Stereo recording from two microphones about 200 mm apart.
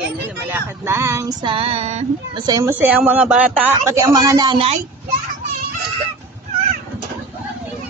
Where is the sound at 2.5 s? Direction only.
15° right (ahead or behind).